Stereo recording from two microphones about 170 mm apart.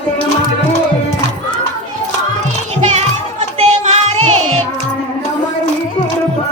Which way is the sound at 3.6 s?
40° right (ahead or behind).